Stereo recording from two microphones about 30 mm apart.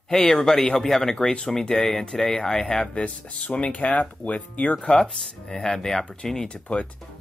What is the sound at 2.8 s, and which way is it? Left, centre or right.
Speech, left.